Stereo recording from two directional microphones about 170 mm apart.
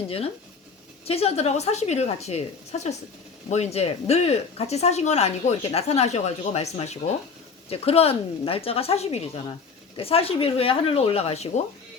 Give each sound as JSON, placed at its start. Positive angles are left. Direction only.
{"t": 1.0, "sound": "speech", "side_deg": 35}